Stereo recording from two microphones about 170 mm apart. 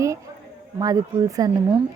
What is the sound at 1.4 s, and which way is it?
Speech, 20° right (ahead or behind).